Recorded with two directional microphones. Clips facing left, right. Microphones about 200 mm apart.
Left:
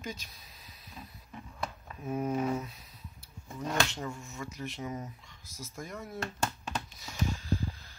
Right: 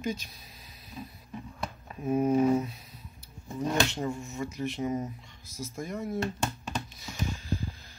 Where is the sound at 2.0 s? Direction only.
15° right (ahead or behind).